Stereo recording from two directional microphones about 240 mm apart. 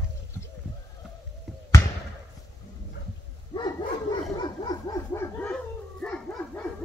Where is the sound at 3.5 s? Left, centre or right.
Centre.